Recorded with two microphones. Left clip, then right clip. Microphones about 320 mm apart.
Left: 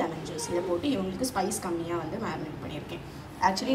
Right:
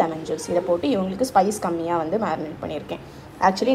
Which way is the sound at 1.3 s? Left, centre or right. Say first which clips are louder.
Right 14 dB; centre.